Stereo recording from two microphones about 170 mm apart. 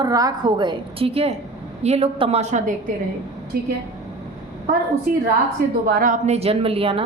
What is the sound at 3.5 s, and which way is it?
Speech, 65° right (ahead or behind).